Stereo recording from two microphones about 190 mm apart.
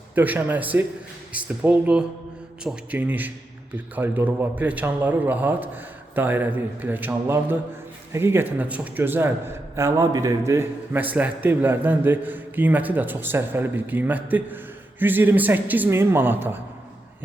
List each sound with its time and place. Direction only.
0.1 s a man's voice: 10° right (ahead or behind)